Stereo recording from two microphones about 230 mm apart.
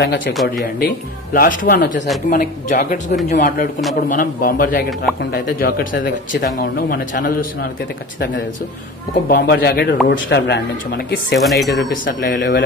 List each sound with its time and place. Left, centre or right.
0.0 s speech: left
0.3 s speech: centre
0.7 s speech: left
9.3 s speech: left
11.3 s speech: centre
11.9 s speech: left